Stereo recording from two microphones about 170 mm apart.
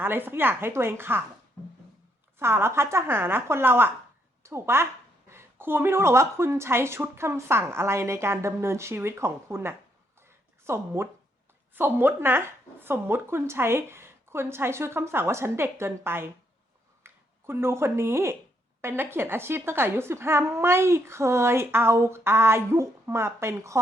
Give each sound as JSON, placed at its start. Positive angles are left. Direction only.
{"t": 0.0, "sound": "a woman's voice", "side_deg": -10}
{"t": 2.4, "sound": "a woman's voice", "side_deg": -15}
{"t": 10.2, "sound": "a sound", "side_deg": -15}
{"t": 11.7, "sound": "a woman's voice", "side_deg": -10}